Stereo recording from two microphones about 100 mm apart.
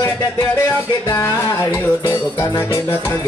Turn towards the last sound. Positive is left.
turn(degrees=30)  # may be behind; listen again after turning